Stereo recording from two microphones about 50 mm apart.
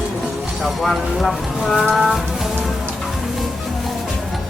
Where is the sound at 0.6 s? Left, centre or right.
Centre.